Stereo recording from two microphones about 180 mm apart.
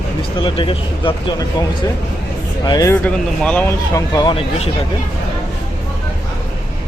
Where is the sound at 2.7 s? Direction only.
20° left (ahead or behind).